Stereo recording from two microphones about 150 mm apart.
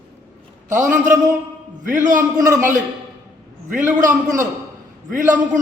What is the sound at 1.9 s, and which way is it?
Speech, 55° right (ahead or behind).